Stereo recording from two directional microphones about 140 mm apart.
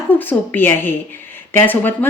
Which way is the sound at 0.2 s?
15° left (ahead or behind).